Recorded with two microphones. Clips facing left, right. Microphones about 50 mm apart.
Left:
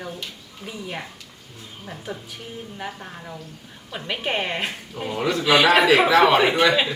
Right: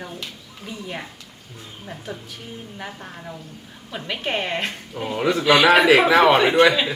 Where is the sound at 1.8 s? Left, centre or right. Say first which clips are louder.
Even; centre.